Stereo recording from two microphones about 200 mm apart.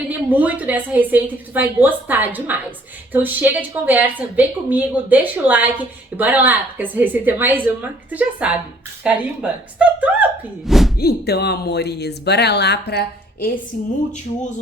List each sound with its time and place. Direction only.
0.1 s speech: 10° right (ahead or behind)
10.9 s speech: 50° left (ahead or behind)
13.7 s speech: 40° left (ahead or behind)